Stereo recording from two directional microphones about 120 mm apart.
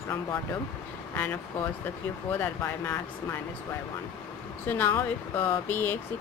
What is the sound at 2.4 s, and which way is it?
Speech, 15° left (ahead or behind).